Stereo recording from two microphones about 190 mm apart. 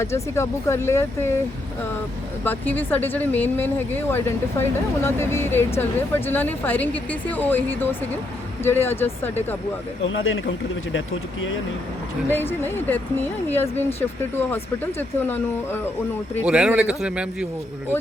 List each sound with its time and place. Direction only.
0.0 s speech: 15° left (ahead or behind)
2.4 s speech: 10° left (ahead or behind)
10.0 s speech: 90° left
12.3 s speech: 10° left (ahead or behind)
16.5 s a man's voice: 5° right (ahead or behind)